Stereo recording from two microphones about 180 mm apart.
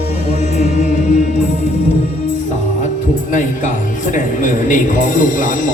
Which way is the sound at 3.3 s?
45° left (ahead or behind).